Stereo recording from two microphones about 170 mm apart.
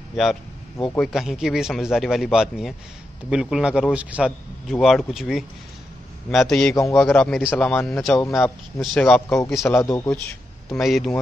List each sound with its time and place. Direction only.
0.1 s a man's voice: centre (ahead or behind)
6.7 s speech: 15° left (ahead or behind)
7.0 s a man's voice: 5° left (ahead or behind)
9.8 s speech: 15° left (ahead or behind)
10.7 s a man's voice: centre (ahead or behind)